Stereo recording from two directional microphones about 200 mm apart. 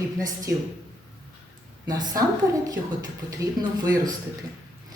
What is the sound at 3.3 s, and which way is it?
Speech, 15° right (ahead or behind).